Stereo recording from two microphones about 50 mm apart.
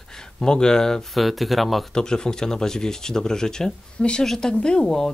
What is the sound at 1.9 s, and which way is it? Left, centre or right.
Speech, centre.